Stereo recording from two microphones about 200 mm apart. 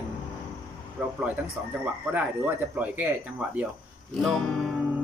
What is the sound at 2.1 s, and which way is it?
Speech, 10° right (ahead or behind).